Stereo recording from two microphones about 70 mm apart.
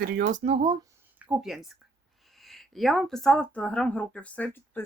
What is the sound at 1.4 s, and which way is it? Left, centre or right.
Speech, centre.